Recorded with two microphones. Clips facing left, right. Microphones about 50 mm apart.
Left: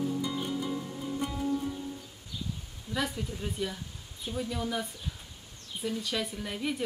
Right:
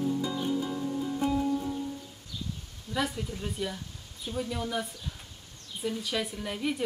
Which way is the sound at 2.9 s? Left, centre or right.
Centre.